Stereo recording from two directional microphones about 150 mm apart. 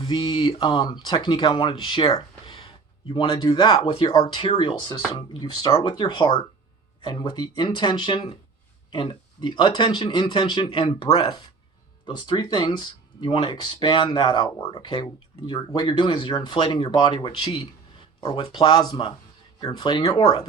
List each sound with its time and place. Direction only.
0.0 s speech: 30° left (ahead or behind)